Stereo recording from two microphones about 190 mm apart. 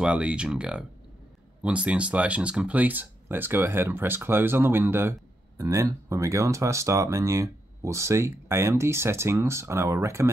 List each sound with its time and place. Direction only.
0.0 s speech: 5° right (ahead or behind)